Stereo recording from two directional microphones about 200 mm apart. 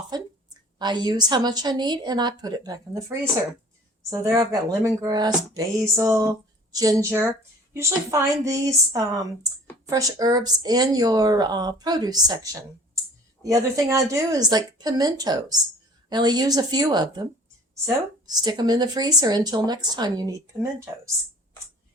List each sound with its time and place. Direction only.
0.1 s a woman's voice: 20° right (ahead or behind)